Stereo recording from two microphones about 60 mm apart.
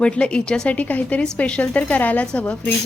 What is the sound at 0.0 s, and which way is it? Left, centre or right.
A woman's voice, centre.